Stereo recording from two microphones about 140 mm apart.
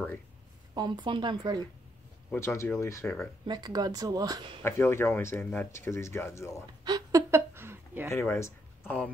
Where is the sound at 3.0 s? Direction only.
5° left (ahead or behind).